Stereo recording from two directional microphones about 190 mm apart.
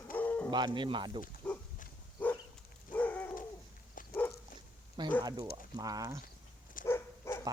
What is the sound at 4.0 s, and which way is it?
Dog, 45° left (ahead or behind).